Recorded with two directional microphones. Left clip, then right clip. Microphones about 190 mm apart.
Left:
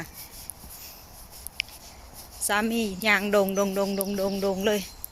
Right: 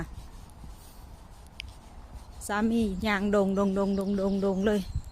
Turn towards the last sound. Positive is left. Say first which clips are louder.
# left 2 dB
turn(degrees=-20)  # may be behind; listen again after turning